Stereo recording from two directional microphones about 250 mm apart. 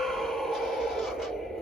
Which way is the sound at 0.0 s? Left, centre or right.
Centre.